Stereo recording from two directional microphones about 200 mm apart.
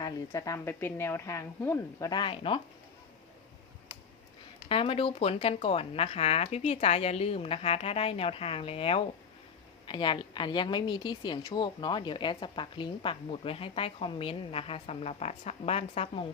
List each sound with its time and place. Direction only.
0.0 s a woman's voice: 15° left (ahead or behind)
4.7 s a woman's voice: 25° left (ahead or behind)